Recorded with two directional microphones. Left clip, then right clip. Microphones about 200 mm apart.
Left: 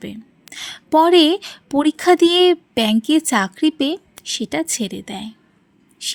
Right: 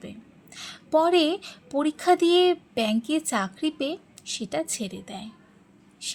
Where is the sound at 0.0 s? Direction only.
45° left (ahead or behind).